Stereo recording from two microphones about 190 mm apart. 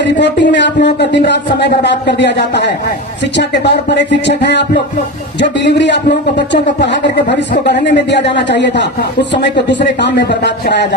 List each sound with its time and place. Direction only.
0.0 s speech: 65° left (ahead or behind)